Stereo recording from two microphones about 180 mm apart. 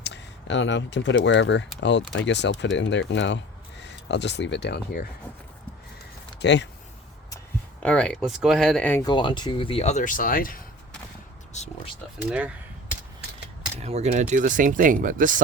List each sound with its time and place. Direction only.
0.0 s speech: 80° left
6.4 s speech: 75° left (ahead or behind)
7.8 s speech: 5° left (ahead or behind)
9.0 s speech: 25° left (ahead or behind); by 10.6 s 50° left (ahead or behind)
11.5 s speech: 40° left (ahead or behind)
12.3 s speech: 5° right (ahead or behind)
13.7 s speech: 35° right (ahead or behind)